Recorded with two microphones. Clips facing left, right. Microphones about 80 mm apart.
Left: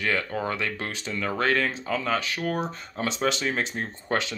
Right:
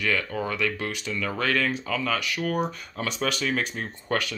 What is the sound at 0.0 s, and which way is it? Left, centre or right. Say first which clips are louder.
Speech: even; left.